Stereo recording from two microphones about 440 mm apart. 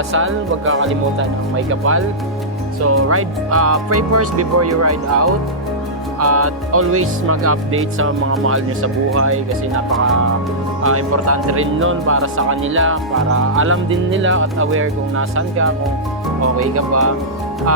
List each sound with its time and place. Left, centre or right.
0.1 s speech: right
10.8 s speech: right